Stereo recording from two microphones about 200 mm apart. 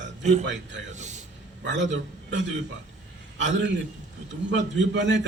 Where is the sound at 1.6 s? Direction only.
65° right (ahead or behind).